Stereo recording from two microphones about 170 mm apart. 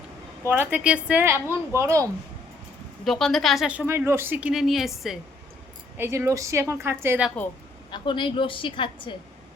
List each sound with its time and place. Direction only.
0.4 s a woman's voice: 15° right (ahead or behind)
3.0 s speech: centre (ahead or behind)
6.0 s a woman's voice: 15° right (ahead or behind)
7.9 s a woman's voice: 25° left (ahead or behind)